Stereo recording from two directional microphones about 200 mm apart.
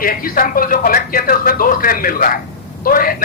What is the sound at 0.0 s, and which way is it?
Speech, 45° left (ahead or behind).